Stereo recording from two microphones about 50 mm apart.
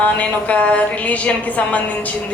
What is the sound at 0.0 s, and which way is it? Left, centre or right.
A woman's voice, left.